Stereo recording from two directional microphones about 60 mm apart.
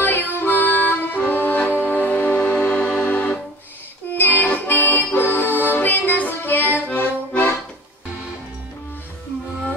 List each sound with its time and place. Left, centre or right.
0.0 s music: left
4.2 s accordion: left